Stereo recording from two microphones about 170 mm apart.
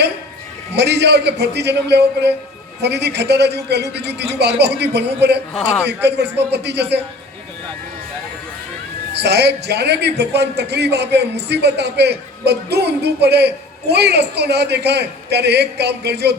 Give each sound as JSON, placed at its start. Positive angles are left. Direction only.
{"t": 0.7, "sound": "a man's voice", "side_deg": -85}
{"t": 9.1, "sound": "a man's voice", "side_deg": -80}